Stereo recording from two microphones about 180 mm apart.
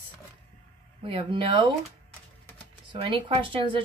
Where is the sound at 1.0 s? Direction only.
30° right (ahead or behind).